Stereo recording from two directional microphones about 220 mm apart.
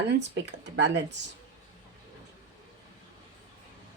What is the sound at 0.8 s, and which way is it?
Speech, 55° right (ahead or behind).